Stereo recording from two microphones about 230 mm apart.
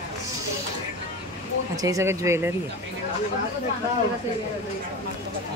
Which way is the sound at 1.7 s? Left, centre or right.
Centre.